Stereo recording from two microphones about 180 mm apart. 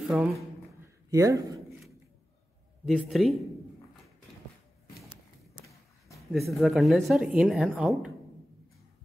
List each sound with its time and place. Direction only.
0.1 s speech: 5° right (ahead or behind)
1.1 s speech: 20° right (ahead or behind)
2.8 s speech: centre (ahead or behind)
6.1 s speech: centre (ahead or behind)